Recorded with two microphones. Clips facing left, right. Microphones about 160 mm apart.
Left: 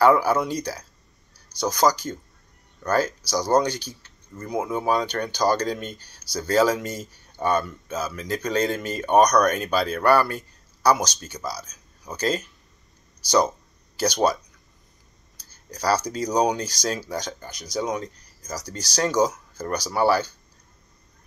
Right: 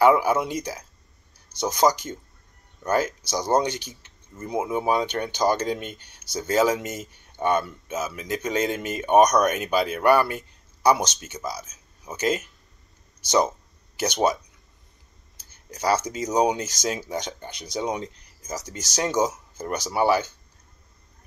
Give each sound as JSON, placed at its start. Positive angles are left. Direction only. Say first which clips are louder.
{"t": 0.0, "sound": "speech", "louder": "even", "side_deg": -20}
{"t": 13.9, "sound": "speech", "louder": "left 1 dB", "side_deg": -20}
{"t": 15.7, "sound": "speech", "louder": "even", "side_deg": -25}